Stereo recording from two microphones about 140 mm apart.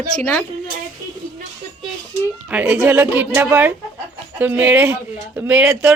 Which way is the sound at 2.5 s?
10° right (ahead or behind).